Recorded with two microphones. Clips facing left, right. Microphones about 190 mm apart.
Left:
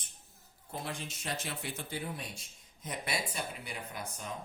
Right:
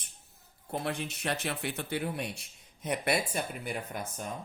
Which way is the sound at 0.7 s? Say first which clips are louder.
Right 6 dB; 60° right (ahead or behind).